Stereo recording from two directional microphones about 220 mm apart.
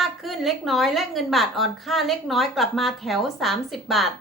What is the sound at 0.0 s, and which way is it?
A woman's voice, centre (ahead or behind).